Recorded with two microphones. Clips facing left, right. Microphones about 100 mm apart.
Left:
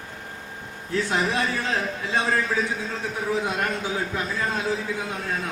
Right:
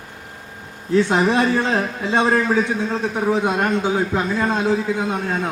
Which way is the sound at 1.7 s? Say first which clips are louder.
Right 6 dB; 80° right.